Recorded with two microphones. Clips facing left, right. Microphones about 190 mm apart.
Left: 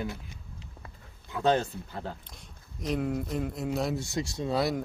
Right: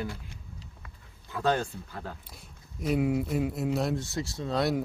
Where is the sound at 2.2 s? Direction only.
5° right (ahead or behind).